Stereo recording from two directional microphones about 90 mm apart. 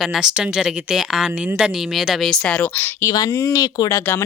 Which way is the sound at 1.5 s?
5° right (ahead or behind).